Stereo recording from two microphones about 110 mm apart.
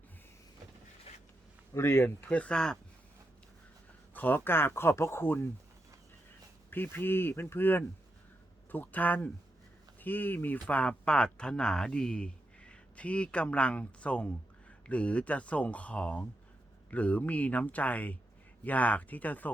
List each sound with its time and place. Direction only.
1.7 s speech: 25° left (ahead or behind); by 2.7 s 5° left (ahead or behind)
4.1 s speech: 15° left (ahead or behind)
6.7 s speech: 20° left (ahead or behind)